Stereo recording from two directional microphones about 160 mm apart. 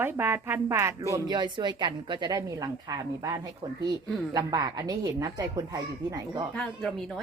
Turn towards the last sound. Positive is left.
turn(degrees=0)  # may be behind; listen again after turning